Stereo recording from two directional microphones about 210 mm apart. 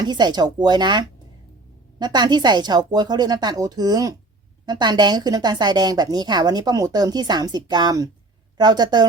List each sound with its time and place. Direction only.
0.0 s a woman's voice: 20° right (ahead or behind)